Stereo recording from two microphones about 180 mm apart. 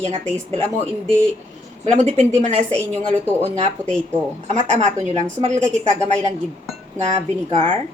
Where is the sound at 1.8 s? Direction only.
40° right (ahead or behind).